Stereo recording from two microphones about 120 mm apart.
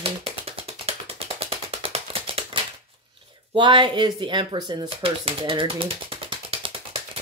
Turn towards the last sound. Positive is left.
turn(degrees=-50)  # may be behind; listen again after turning